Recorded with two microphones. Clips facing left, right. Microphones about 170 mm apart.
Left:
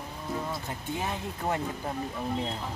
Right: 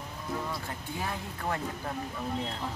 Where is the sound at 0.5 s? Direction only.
20° left (ahead or behind).